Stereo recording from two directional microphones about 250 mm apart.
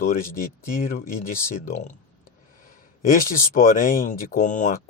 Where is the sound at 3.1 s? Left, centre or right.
Left.